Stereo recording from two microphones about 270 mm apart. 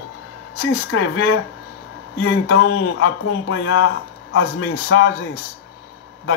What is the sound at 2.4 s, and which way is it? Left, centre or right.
Speech, left.